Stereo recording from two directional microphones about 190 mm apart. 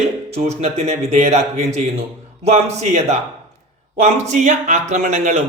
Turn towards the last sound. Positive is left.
turn(degrees=-40)  # may be behind; listen again after turning